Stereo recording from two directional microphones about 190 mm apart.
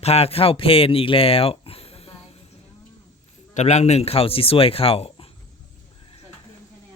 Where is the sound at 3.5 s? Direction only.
35° left (ahead or behind).